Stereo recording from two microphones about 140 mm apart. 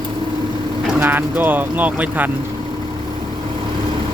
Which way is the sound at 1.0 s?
15° right (ahead or behind).